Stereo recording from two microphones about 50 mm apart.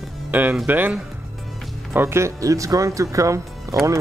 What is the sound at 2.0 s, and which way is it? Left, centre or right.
Speech, right.